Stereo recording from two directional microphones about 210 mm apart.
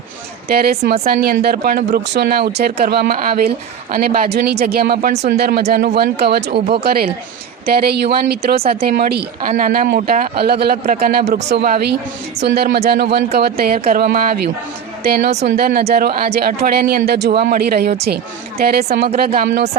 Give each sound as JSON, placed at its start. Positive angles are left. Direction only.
{"t": 0.4, "sound": "a man's voice", "side_deg": -45}
{"t": 5.4, "sound": "a man's voice", "side_deg": -45}